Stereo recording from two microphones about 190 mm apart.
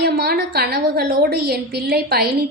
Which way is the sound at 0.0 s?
55° right (ahead or behind).